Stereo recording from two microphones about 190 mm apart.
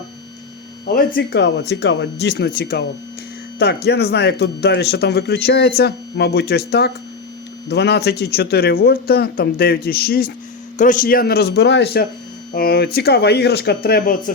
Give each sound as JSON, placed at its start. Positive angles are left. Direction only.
{"t": 0.9, "sound": "speech", "side_deg": 50}
{"t": 2.6, "sound": "speech", "side_deg": 50}